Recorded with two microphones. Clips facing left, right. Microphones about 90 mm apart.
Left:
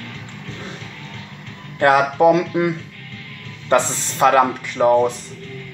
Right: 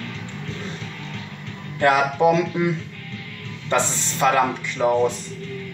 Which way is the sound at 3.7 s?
40° left (ahead or behind).